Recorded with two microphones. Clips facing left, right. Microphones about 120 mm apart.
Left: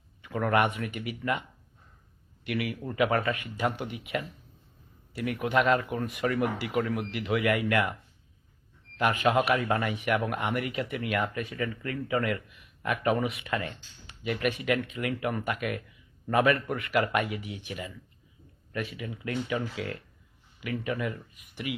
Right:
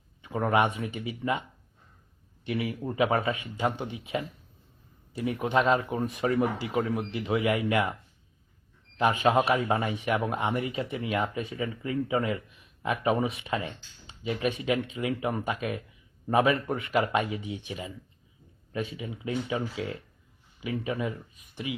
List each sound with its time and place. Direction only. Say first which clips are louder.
0.2 s a man's voice: right 1 dB; 20° right (ahead or behind)
9.0 s speech: right 1 dB; 20° right (ahead or behind)
20.8 s speech: even; 15° right (ahead or behind)